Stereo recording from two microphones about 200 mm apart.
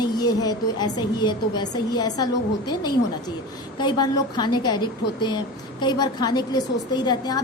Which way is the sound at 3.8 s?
20° left (ahead or behind).